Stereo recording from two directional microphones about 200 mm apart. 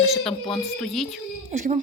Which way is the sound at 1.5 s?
35° right (ahead or behind).